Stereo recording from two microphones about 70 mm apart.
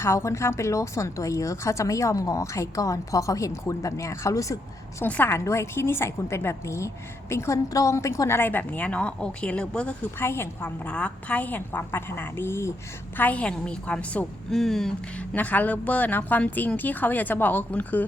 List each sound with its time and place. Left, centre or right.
0.0 s a woman's voice: left
5.0 s a woman's voice: left
5.5 s a woman's voice: left; by 9.9 s centre
10.2 s a woman's voice: left
10.8 s a woman's voice: centre; by 12.7 s left
13.1 s a woman's voice: left
14.5 s speech: centre
15.1 s a woman's voice: centre